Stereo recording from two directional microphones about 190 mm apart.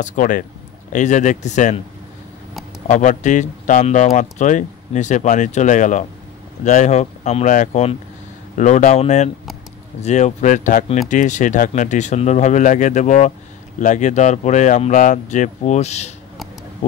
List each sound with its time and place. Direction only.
0.0 s a man's voice: 45° left (ahead or behind)
2.9 s speech: 40° left (ahead or behind)